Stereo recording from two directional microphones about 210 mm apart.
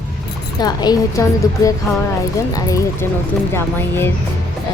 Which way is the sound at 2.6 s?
15° left (ahead or behind).